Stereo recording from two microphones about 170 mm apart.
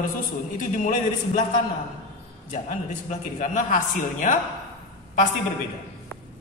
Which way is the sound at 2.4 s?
45° left (ahead or behind).